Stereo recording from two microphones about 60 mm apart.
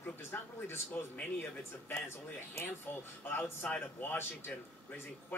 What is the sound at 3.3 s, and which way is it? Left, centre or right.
Speech, left.